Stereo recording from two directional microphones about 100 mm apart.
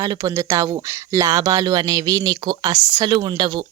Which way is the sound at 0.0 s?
40° right (ahead or behind).